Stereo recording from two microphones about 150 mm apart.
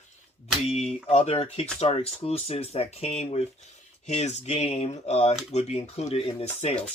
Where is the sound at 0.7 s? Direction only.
45° left (ahead or behind).